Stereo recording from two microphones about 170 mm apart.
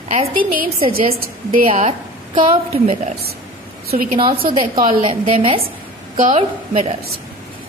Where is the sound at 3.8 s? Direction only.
55° right (ahead or behind).